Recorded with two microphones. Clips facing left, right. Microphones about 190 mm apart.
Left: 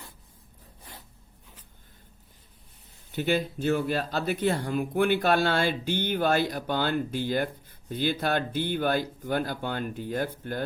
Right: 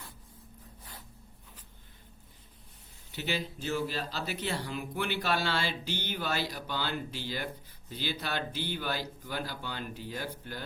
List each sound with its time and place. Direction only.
3.1 s speech: 50° left (ahead or behind)